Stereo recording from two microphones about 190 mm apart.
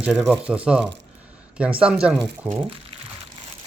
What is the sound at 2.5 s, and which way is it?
Speech, 30° right (ahead or behind).